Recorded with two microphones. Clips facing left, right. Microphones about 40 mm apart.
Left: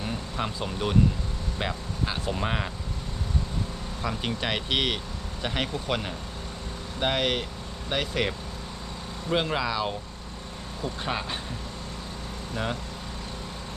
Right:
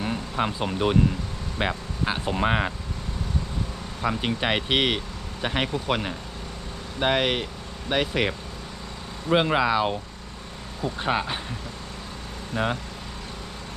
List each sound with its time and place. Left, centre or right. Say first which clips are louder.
0.0 s a sound: right 5 dB; right
1.5 s speech: right 5 dB; right
4.0 s speech: right 5 dB; centre
12.5 s speech: right 5 dB; right